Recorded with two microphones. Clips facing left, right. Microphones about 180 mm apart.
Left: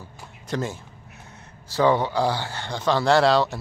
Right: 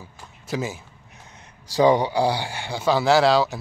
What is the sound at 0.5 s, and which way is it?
A man's voice, 5° right (ahead or behind).